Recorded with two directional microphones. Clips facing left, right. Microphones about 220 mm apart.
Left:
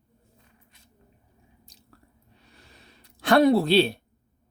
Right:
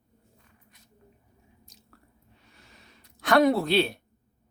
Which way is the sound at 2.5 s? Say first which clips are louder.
Left 2 dB; 35° left (ahead or behind).